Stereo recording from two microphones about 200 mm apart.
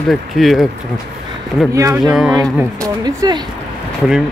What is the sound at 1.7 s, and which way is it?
Speech, 15° right (ahead or behind).